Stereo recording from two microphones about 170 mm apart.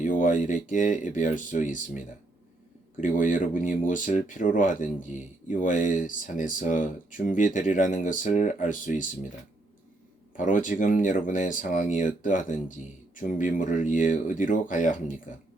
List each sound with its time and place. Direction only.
0.0 s speech: 50° left (ahead or behind)
3.0 s speech: 50° left (ahead or behind)
10.3 s speech: 50° left (ahead or behind)